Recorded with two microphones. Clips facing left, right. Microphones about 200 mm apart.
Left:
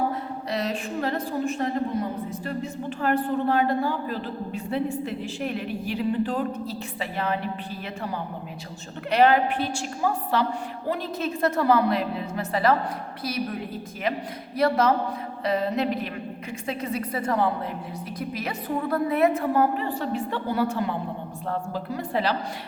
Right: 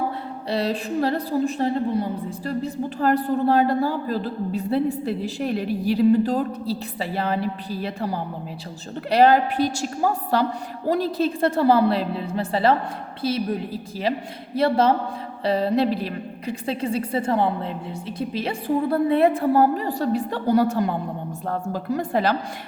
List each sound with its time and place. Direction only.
0.5 s a woman's voice: 35° right (ahead or behind)
14.5 s a woman's voice: 30° right (ahead or behind); by 22.4 s 45° right (ahead or behind)